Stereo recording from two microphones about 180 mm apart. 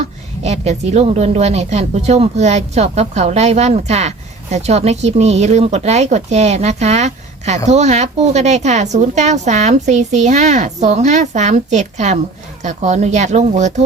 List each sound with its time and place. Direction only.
0.4 s a woman's voice: 35° right (ahead or behind)